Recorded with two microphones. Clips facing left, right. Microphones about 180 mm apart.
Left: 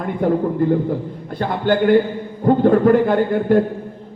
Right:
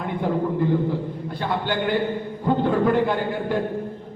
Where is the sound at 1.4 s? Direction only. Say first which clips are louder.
Left 8 dB; 50° left (ahead or behind).